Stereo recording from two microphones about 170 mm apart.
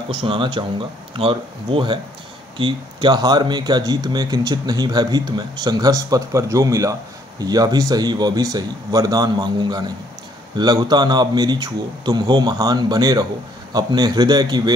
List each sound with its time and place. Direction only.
0.1 s speech: 30° right (ahead or behind)